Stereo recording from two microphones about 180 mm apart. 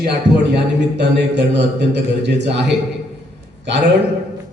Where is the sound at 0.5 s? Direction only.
70° right (ahead or behind).